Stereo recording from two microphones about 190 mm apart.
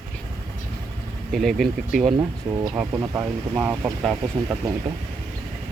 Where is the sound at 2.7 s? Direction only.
15° right (ahead or behind).